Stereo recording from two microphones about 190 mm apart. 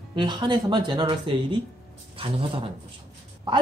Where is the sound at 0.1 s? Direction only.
25° right (ahead or behind).